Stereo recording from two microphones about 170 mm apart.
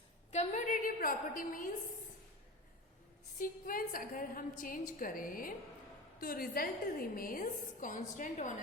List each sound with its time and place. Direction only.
0.3 s a woman's voice: 40° left (ahead or behind)
3.3 s a woman's voice: 55° left (ahead or behind)